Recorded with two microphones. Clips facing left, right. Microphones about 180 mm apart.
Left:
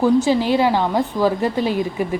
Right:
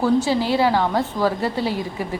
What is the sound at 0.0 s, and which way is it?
A woman's voice, 15° left (ahead or behind).